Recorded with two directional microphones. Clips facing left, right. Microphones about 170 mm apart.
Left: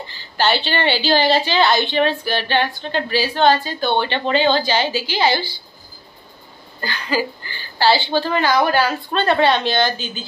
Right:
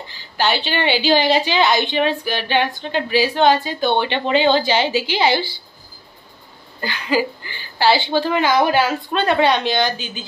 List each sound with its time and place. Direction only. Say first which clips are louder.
0.4 s a woman's voice: left 1 dB; 10° right (ahead or behind)
6.8 s a woman's voice: right 2 dB; 20° right (ahead or behind)